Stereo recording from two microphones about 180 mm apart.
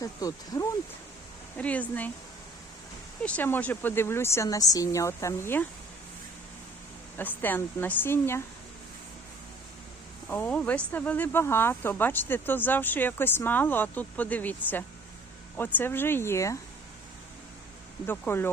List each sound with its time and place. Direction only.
0.0 s speech: 20° left (ahead or behind)
1.5 s speech: 10° left (ahead or behind)
3.2 s speech: 10° left (ahead or behind)
7.2 s speech: 10° left (ahead or behind)
10.2 s speech: 10° left (ahead or behind)
18.0 s speech: 10° left (ahead or behind)